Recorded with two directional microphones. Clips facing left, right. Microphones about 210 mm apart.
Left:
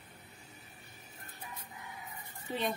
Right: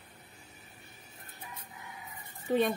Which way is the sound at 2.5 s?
55° right (ahead or behind).